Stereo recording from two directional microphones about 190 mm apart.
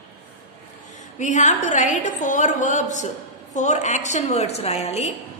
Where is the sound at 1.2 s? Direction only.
40° left (ahead or behind).